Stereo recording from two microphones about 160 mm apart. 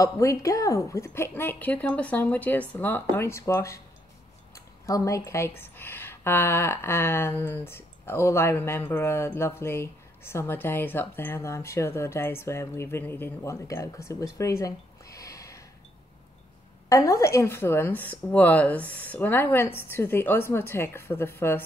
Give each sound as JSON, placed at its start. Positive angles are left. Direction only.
{"t": 0.0, "sound": "speech", "side_deg": 20}
{"t": 4.8, "sound": "speech", "side_deg": 20}
{"t": 16.9, "sound": "speech", "side_deg": 20}